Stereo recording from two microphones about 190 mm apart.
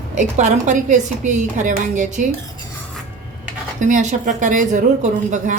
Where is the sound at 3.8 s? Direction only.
40° right (ahead or behind).